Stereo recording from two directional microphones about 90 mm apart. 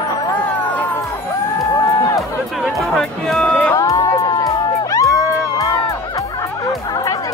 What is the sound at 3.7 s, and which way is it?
Music, 40° left (ahead or behind).